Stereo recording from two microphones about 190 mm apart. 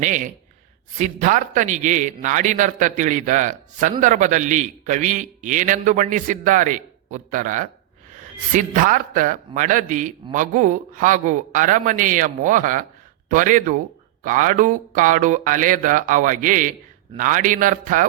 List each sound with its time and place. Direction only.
0.0 s a man's voice: 40° right (ahead or behind)